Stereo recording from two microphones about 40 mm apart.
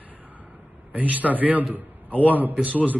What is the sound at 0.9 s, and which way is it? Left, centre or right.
A man's voice, right.